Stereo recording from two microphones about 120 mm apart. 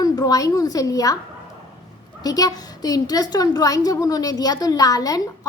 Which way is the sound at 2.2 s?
30° left (ahead or behind).